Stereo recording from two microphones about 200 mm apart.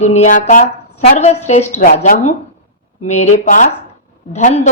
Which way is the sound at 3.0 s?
35° left (ahead or behind).